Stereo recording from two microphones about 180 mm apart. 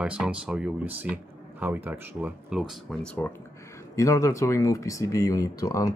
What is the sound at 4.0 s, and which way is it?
Speech, 15° left (ahead or behind).